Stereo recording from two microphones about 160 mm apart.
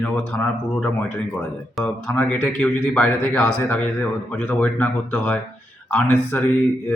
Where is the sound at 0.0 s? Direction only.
5° left (ahead or behind).